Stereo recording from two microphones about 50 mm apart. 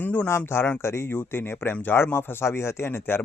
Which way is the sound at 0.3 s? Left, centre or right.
Left.